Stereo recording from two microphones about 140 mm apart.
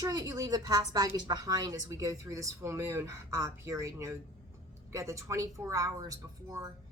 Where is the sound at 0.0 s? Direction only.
25° right (ahead or behind).